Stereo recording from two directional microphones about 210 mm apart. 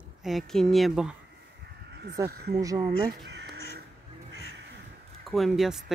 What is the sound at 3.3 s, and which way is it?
Crow, 55° right (ahead or behind).